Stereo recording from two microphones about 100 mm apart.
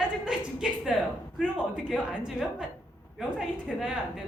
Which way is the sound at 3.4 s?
5° right (ahead or behind).